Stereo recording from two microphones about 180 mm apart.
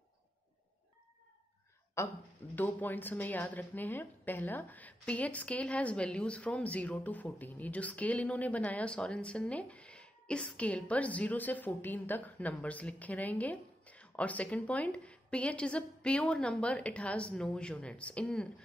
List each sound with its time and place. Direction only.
2.0 s a woman's voice: 15° left (ahead or behind)